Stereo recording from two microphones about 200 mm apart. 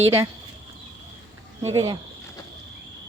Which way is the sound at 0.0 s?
15° right (ahead or behind).